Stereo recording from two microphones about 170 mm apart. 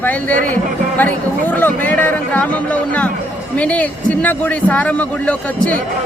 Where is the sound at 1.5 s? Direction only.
10° left (ahead or behind).